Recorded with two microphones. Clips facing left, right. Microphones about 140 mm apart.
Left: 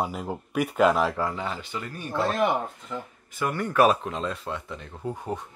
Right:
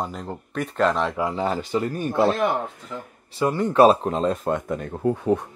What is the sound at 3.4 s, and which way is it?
Speech, 25° right (ahead or behind).